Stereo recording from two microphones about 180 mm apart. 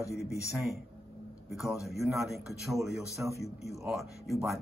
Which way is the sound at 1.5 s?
Centre (ahead or behind).